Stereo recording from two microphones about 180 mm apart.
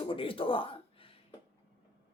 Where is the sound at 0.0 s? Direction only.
30° left (ahead or behind).